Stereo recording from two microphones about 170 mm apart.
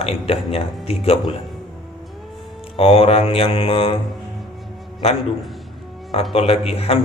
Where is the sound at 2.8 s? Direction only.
30° left (ahead or behind).